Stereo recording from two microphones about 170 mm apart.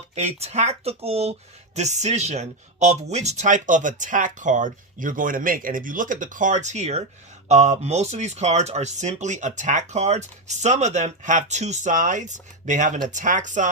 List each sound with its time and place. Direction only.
0.2 s speech: 40° right (ahead or behind)